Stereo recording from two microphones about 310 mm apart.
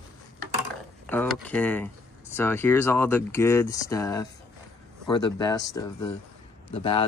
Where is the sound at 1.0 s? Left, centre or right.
Centre.